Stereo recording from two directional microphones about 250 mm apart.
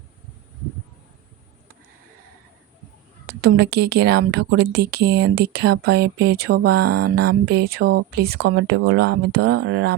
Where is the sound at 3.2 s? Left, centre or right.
Right.